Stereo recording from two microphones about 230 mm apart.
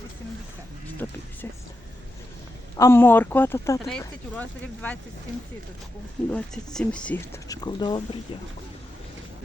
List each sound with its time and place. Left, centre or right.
0.9 s a sound: centre
2.7 s a woman's voice: centre
6.3 s speech: centre
7.4 s speech: centre